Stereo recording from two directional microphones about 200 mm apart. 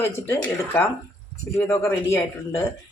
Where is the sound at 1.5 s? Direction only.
10° left (ahead or behind).